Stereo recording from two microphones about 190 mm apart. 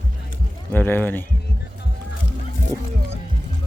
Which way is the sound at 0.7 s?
10° left (ahead or behind).